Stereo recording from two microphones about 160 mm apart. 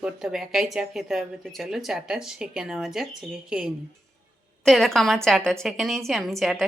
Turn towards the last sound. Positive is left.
turn(degrees=0)  # may be behind; listen again after turning